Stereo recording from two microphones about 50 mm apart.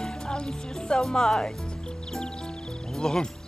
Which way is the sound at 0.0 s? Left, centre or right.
Centre.